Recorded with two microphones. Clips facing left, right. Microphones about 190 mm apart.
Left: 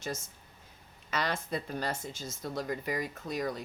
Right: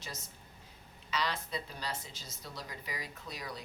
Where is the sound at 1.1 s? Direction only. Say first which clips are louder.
Left 3 dB; 50° left (ahead or behind).